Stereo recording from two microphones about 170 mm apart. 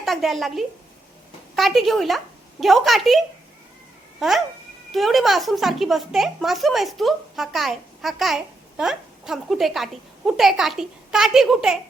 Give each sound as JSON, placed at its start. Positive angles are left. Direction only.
{"t": 0.0, "sound": "a woman's voice", "side_deg": 0}
{"t": 4.2, "sound": "a woman's voice", "side_deg": 0}